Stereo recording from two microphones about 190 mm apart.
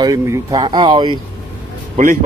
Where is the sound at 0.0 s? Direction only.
20° right (ahead or behind).